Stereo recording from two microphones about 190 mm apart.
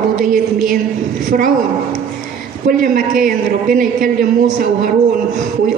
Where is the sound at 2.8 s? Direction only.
45° right (ahead or behind).